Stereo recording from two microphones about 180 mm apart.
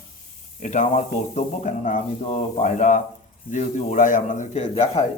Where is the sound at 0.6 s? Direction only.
40° left (ahead or behind).